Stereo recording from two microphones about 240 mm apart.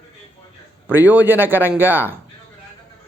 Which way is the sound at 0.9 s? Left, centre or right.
Centre.